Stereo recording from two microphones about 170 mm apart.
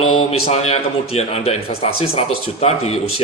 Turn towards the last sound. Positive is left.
turn(degrees=35)  # may be behind; listen again after turning